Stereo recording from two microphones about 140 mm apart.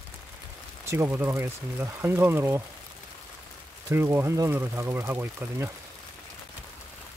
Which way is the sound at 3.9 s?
20° right (ahead or behind).